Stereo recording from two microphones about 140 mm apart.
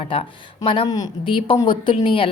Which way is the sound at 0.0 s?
40° left (ahead or behind).